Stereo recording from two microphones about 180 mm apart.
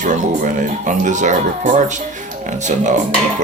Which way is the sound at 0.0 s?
45° right (ahead or behind).